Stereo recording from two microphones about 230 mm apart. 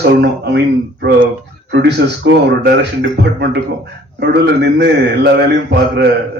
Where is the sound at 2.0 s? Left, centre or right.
Right.